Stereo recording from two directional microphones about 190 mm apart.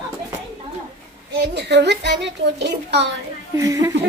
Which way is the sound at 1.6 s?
65° right (ahead or behind).